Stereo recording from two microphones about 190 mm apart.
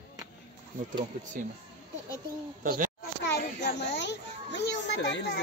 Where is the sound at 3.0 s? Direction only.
60° left (ahead or behind).